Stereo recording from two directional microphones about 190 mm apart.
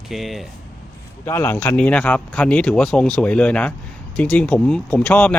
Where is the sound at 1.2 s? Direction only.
15° left (ahead or behind).